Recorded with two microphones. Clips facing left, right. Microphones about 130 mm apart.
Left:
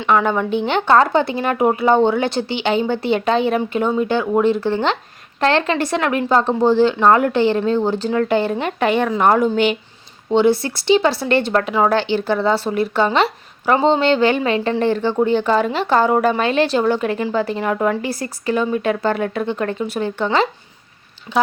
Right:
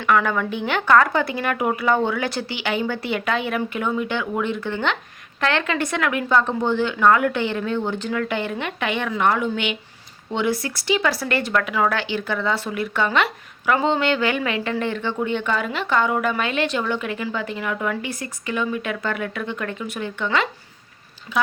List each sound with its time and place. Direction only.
0.0 s speech: 25° left (ahead or behind)